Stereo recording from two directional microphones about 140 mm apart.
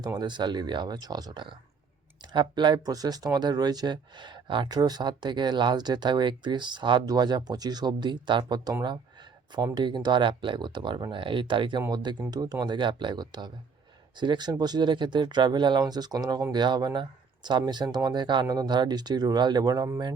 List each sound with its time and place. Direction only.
0.2 s speech: 30° right (ahead or behind)
9.7 s speech: 30° right (ahead or behind)